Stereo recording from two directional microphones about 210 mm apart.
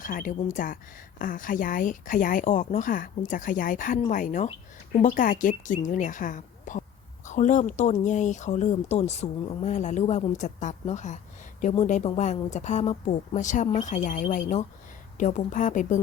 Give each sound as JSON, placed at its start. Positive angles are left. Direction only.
{"t": 0.0, "sound": "speech", "side_deg": 40}